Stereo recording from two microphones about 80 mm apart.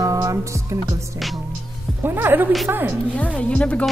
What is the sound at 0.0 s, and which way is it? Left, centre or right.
Music, right.